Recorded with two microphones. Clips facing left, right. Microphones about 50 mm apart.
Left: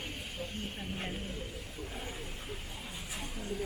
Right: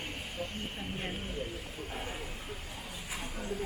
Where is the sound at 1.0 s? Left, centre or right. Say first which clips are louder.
Right 2 dB; right.